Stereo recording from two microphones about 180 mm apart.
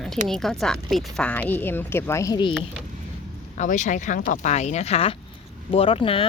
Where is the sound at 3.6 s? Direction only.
45° left (ahead or behind).